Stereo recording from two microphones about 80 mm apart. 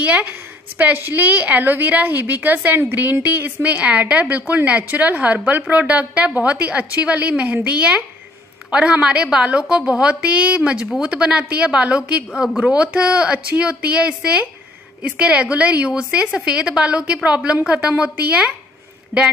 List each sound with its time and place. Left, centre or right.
0.0 s a woman's voice: centre
19.1 s a woman's voice: right